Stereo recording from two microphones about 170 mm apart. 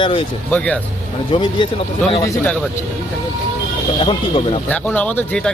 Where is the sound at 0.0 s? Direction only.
30° left (ahead or behind).